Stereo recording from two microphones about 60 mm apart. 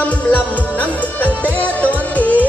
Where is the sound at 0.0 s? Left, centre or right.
Left.